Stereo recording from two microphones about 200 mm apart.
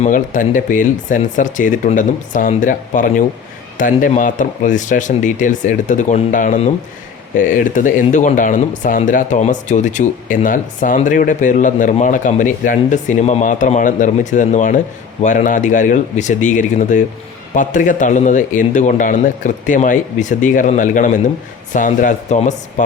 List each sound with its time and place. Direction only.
0.0 s speech: 40° left (ahead or behind)